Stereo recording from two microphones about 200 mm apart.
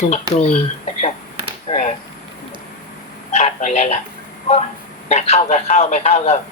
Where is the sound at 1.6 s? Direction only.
35° left (ahead or behind).